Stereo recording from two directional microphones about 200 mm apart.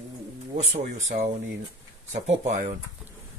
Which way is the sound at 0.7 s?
35° right (ahead or behind).